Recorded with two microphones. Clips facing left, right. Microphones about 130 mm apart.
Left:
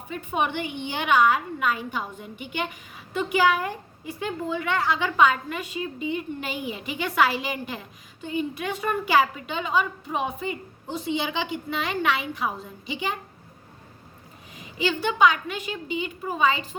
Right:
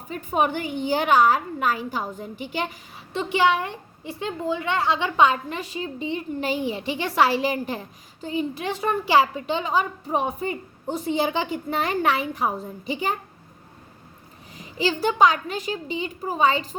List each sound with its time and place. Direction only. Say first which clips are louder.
0.1 s a woman's voice: right 3 dB; 40° right (ahead or behind)
14.5 s a woman's voice: right 2 dB; 35° right (ahead or behind)